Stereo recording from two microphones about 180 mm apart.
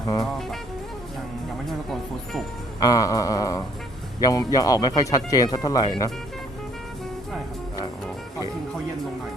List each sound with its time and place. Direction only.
0.0 s music: 20° left (ahead or behind)
1.6 s music: centre (ahead or behind)
2.8 s speech: 20° left (ahead or behind)